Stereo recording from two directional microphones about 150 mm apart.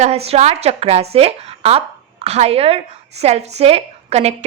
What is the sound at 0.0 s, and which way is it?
A woman's voice, 45° right (ahead or behind).